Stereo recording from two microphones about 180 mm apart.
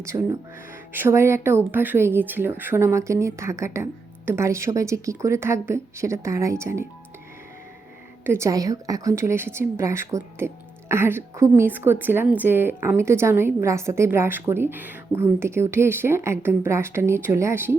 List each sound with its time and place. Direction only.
0.0 s a woman's voice: 15° right (ahead or behind)
8.2 s a woman's voice: 15° right (ahead or behind)